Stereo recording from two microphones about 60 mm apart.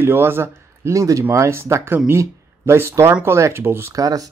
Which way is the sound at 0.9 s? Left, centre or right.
Right.